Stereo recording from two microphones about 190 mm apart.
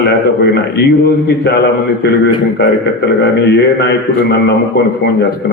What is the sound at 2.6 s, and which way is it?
A man's voice, 60° left (ahead or behind).